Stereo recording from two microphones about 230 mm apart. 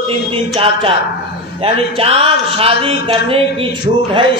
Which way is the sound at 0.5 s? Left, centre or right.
Right.